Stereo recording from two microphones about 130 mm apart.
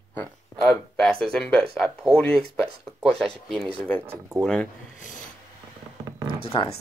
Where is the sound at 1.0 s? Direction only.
5° left (ahead or behind).